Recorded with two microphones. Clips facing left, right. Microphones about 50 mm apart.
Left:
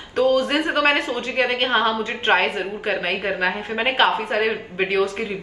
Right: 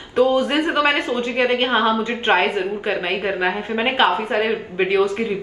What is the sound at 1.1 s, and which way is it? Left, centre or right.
Speech, right.